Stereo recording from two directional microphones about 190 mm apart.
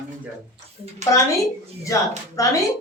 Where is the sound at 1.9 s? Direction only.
15° left (ahead or behind).